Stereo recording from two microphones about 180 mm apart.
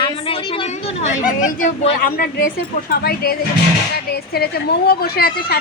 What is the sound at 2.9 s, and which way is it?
Speech, 60° left (ahead or behind).